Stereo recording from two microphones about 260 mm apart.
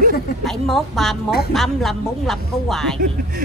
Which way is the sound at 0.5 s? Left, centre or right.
Centre.